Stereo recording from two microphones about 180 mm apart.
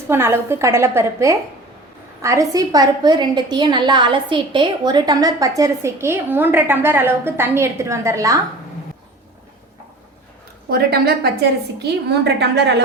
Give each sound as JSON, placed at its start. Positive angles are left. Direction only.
{"t": 0.1, "sound": "a woman's voice", "side_deg": -15}
{"t": 10.7, "sound": "a woman's voice", "side_deg": -60}